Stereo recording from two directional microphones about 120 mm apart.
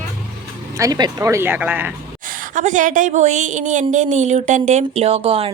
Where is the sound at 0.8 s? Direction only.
35° right (ahead or behind); by 2.0 s 15° right (ahead or behind).